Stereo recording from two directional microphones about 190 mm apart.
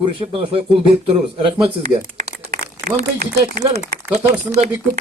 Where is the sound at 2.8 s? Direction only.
35° right (ahead or behind).